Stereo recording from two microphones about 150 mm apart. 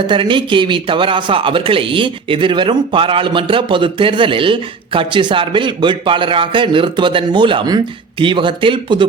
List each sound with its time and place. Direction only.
0.1 s speech: 35° right (ahead or behind)